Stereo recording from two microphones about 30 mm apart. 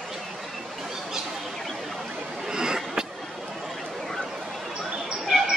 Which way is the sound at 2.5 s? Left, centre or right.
Right.